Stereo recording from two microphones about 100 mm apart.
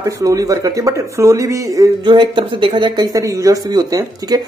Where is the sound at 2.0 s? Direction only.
50° right (ahead or behind).